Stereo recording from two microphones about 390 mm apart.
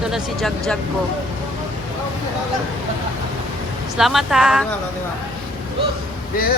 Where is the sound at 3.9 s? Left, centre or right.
Centre.